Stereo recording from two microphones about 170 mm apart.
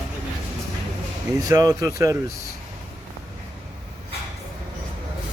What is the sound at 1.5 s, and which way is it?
Speech, 20° right (ahead or behind).